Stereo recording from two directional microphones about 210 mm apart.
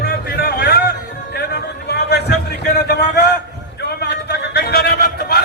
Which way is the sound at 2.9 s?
50° left (ahead or behind).